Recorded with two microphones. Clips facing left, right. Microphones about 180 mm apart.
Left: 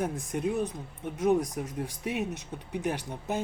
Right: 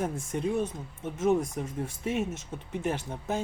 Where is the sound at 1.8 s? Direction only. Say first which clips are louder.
Right 2 dB; 15° left (ahead or behind).